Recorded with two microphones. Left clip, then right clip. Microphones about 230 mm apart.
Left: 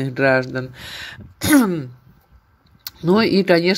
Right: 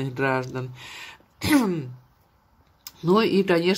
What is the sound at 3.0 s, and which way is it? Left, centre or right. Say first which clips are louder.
Speech: left 4 dB; centre.